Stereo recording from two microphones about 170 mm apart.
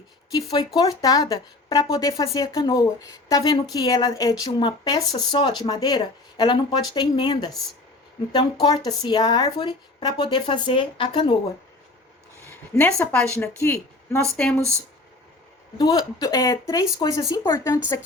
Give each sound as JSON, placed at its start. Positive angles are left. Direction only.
{"t": 0.5, "sound": "speech", "side_deg": 25}
{"t": 8.6, "sound": "speech", "side_deg": 25}
{"t": 12.5, "sound": "a woman's voice", "side_deg": 15}
{"t": 15.8, "sound": "speech", "side_deg": 25}